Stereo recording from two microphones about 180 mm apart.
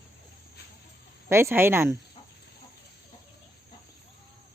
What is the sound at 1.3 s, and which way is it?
Speech, 15° right (ahead or behind).